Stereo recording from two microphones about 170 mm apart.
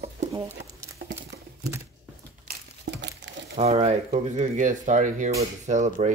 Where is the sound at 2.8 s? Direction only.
90° right.